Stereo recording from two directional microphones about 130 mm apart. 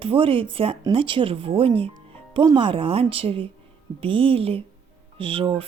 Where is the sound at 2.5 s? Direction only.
45° right (ahead or behind).